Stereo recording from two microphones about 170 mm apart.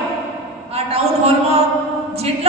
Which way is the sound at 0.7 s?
35° right (ahead or behind).